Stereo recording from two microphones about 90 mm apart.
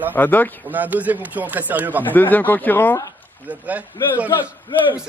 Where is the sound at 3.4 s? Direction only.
15° right (ahead or behind).